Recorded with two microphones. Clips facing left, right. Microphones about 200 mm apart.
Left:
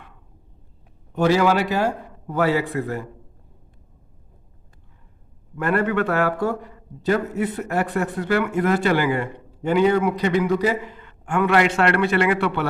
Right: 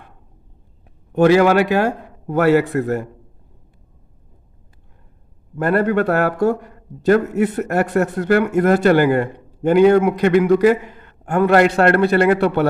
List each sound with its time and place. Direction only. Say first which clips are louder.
1.1 s a man's voice: right 6 dB; 55° right (ahead or behind)
5.5 s a man's voice: right 4 dB; 40° right (ahead or behind)